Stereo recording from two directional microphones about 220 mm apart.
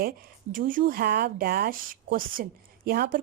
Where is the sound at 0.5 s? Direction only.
40° right (ahead or behind).